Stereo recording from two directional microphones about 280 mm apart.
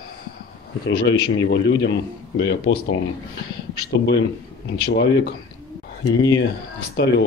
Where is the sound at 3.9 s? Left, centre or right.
Left.